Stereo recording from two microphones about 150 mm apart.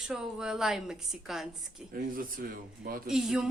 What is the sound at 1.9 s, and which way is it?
Speech, 70° right (ahead or behind).